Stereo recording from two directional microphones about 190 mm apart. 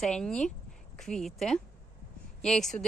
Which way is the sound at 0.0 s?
5° left (ahead or behind).